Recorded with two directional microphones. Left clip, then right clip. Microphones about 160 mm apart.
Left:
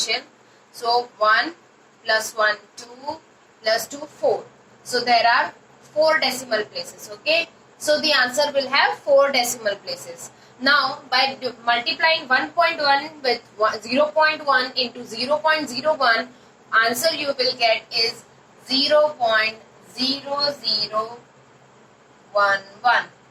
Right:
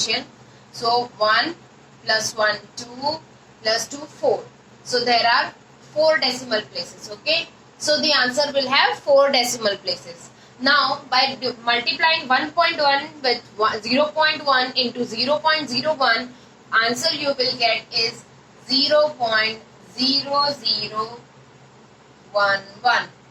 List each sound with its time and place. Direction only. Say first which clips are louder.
0.0 s a woman's voice: right 1 dB; 20° right (ahead or behind)
22.4 s a woman's voice: even; 20° right (ahead or behind)